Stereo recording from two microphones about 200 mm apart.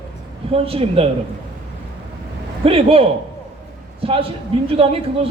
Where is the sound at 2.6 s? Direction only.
30° right (ahead or behind).